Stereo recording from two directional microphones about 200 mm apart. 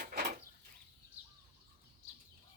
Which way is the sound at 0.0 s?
50° right (ahead or behind).